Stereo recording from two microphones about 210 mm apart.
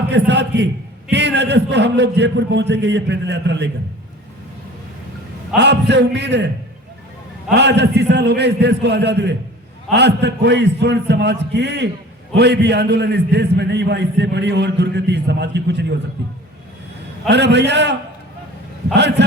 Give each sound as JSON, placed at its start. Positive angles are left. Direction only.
{"t": 0.1, "sound": "a man's voice", "side_deg": -55}
{"t": 5.5, "sound": "a man's voice", "side_deg": -55}
{"t": 7.5, "sound": "a man's voice", "side_deg": -55}
{"t": 17.2, "sound": "a man's voice", "side_deg": -55}